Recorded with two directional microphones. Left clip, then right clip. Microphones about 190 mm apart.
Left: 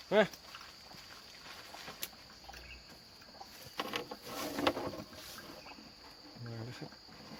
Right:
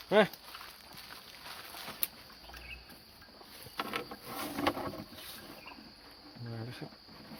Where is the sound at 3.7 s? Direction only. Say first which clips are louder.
Right 2 dB; centre (ahead or behind).